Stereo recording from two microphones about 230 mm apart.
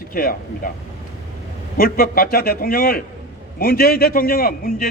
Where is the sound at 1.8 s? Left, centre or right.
Left.